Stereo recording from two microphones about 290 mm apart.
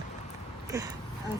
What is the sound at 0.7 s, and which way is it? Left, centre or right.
Speech, centre.